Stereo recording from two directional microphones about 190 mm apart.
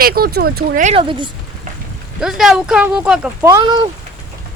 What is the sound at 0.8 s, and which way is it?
Speech, 30° right (ahead or behind).